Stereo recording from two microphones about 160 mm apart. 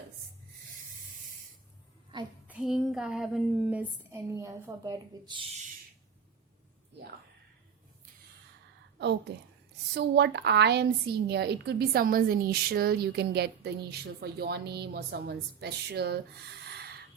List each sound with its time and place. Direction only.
2.1 s a woman's voice: 30° right (ahead or behind)
2.5 s speech: 5° right (ahead or behind)
4.4 s a woman's voice: 20° right (ahead or behind)
9.0 s a woman's voice: 90° right